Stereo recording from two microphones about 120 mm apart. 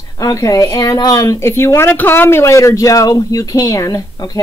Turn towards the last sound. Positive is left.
turn(degrees=30)  # may be behind; listen again after turning